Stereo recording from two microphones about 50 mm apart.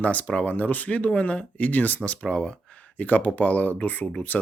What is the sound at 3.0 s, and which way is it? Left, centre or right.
Speech, left.